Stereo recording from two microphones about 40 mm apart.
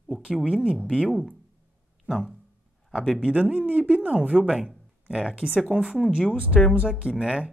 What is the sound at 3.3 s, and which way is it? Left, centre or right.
Speech, right.